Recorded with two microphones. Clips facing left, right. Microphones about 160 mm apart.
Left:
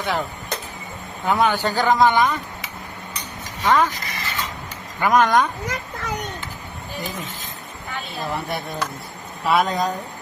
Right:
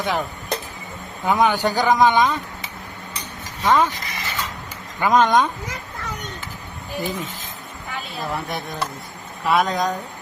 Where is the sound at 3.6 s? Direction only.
20° right (ahead or behind).